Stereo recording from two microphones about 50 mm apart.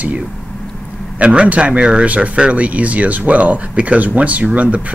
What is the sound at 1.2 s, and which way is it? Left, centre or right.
Speech, right.